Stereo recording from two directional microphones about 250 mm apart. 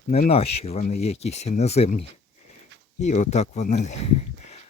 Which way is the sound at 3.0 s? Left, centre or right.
Left.